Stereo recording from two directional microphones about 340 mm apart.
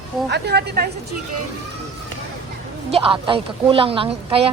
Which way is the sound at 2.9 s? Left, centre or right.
Centre.